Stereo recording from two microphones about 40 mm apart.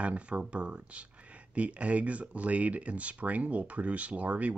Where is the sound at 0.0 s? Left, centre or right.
Right.